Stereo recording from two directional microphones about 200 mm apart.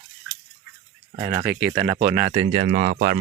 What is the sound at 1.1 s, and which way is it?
Speech, 20° right (ahead or behind).